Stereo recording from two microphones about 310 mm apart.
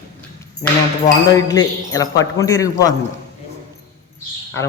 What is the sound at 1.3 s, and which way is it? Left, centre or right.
A man's voice, centre.